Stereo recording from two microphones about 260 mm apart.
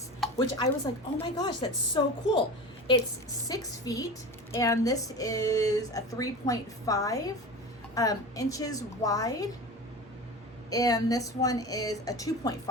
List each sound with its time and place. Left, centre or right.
0.3 s speech: centre
3.4 s speech: centre
10.7 s speech: centre